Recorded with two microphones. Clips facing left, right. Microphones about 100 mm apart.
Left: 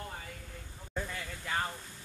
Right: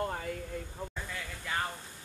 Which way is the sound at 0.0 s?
55° right (ahead or behind).